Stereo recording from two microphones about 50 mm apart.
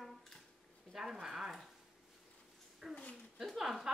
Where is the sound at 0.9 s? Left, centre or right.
Centre.